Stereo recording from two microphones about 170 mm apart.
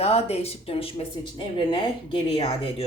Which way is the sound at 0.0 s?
35° left (ahead or behind).